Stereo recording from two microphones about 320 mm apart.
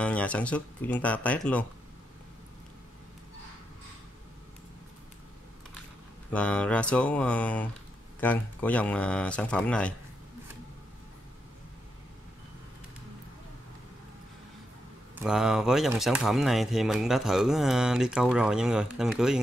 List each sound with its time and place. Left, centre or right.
0.0 s speech: centre
6.3 s speech: centre
15.2 s speech: centre